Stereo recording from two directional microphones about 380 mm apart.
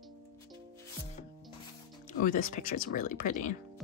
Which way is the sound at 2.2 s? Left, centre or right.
Left.